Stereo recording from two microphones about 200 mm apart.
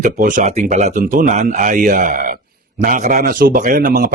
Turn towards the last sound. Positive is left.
turn(degrees=-40)  # may be behind; listen again after turning